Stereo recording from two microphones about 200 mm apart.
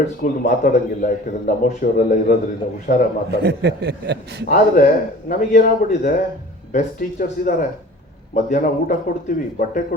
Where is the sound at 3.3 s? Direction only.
55° right (ahead or behind).